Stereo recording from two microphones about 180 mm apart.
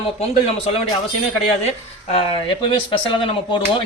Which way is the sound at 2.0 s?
30° left (ahead or behind).